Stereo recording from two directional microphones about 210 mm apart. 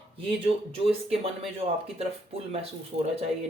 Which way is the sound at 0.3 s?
25° right (ahead or behind).